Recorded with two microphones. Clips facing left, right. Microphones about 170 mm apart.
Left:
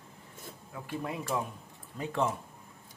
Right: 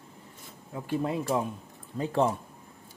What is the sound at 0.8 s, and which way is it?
Speech, 30° right (ahead or behind).